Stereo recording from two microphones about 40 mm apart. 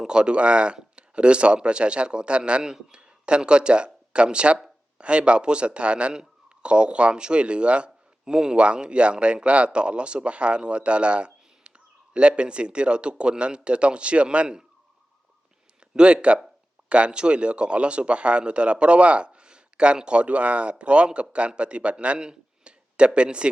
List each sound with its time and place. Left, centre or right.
0.1 s speech: right
16.0 s speech: right